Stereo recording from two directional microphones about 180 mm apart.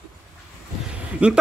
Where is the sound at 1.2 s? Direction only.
5° right (ahead or behind).